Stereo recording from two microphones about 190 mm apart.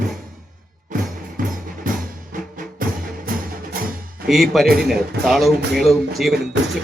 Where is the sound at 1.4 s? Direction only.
45° right (ahead or behind).